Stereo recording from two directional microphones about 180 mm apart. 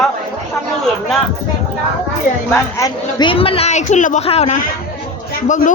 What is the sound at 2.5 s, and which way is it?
A woman's voice, 20° left (ahead or behind).